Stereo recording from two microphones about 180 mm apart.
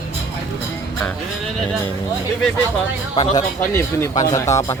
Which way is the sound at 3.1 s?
30° left (ahead or behind).